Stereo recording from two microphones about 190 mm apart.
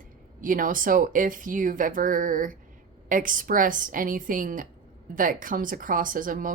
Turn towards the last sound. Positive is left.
turn(degrees=-45)  # may be behind; listen again after turning